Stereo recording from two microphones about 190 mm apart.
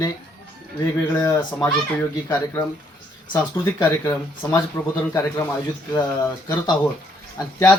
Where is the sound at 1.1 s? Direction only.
15° left (ahead or behind).